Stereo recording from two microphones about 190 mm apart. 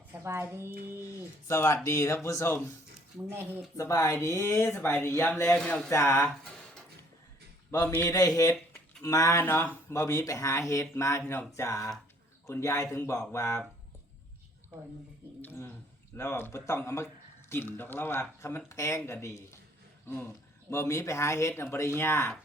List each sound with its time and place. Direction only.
0.1 s speech: 10° right (ahead or behind)
1.5 s speech: 15° left (ahead or behind)
3.2 s speech: 10° right (ahead or behind)
3.8 s speech: 15° left (ahead or behind)
7.7 s speech: 15° left (ahead or behind)
15.4 s speech: 10° left (ahead or behind)